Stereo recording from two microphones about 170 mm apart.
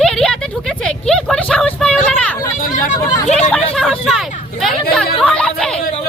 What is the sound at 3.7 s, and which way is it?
Hubbub, centre (ahead or behind).